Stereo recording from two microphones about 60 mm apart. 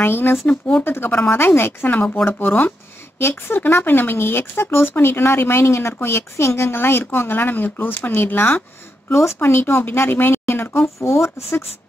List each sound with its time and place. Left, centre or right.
0.0 s speech: left
0.5 s speech: left
0.8 s speech: left